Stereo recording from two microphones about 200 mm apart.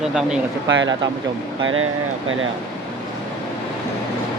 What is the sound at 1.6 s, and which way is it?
Speech, 90° right.